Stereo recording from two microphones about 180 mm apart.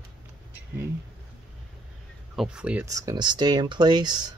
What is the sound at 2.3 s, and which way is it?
Speech, 5° right (ahead or behind).